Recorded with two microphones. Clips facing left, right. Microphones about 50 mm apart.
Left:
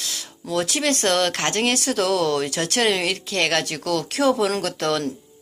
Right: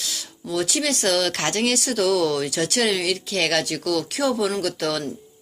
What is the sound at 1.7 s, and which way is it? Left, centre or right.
Speech, left.